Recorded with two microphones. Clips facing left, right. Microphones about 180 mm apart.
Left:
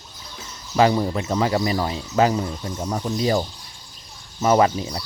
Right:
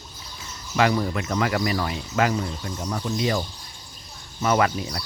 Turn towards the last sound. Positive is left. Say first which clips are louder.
# left 4 dB
turn(degrees=30)  # may be behind; listen again after turning